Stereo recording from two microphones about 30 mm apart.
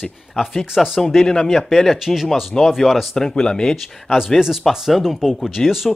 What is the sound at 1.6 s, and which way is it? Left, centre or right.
Speech, centre.